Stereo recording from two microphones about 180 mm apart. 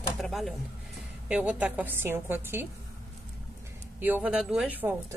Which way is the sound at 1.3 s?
5° right (ahead or behind).